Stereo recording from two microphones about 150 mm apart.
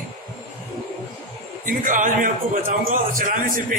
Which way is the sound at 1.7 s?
60° right (ahead or behind).